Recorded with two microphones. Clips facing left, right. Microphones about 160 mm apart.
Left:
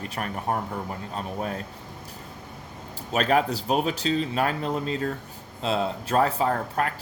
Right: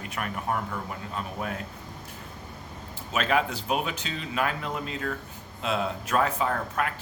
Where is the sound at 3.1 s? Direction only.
40° left (ahead or behind).